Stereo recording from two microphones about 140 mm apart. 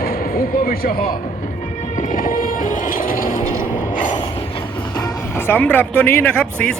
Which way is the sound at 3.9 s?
35° left (ahead or behind).